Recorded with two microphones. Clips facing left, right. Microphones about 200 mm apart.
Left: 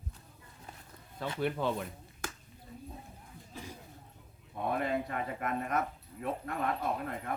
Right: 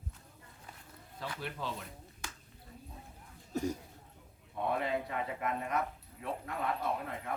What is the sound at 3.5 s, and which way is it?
Speech, 45° right (ahead or behind).